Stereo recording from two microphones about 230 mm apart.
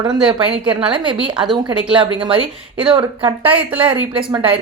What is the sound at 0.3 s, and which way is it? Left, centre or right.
A woman's voice, right.